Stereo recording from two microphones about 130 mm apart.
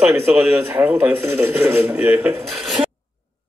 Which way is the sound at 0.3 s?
20° right (ahead or behind).